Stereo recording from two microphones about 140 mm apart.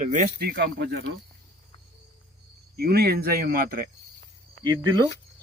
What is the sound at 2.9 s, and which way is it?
Speech, 90° right.